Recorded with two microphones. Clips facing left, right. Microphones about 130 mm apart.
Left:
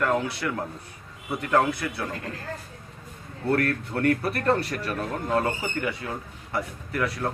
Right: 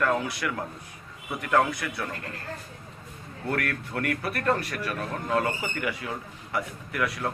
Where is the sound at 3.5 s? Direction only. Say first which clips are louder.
Left 5 dB; 30° left (ahead or behind).